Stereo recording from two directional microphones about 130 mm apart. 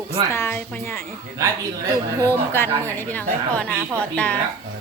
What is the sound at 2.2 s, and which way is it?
A woman's voice, 15° left (ahead or behind).